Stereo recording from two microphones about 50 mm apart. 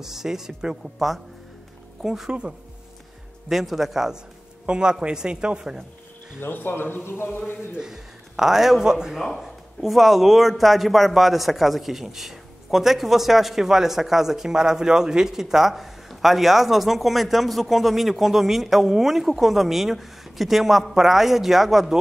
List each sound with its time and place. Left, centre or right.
0.0 s a man's voice: centre
0.9 s a man's voice: centre
3.4 s a man's voice: centre
6.4 s speech: left
7.7 s a man's voice: centre